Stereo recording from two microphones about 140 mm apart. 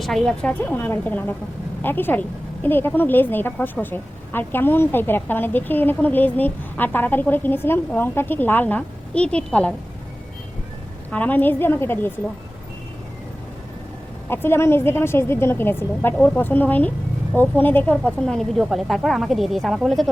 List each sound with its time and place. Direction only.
0.0 s a woman's voice: 5° left (ahead or behind)
11.1 s a woman's voice: 10° left (ahead or behind)
14.3 s a woman's voice: 15° left (ahead or behind); by 20.1 s centre (ahead or behind)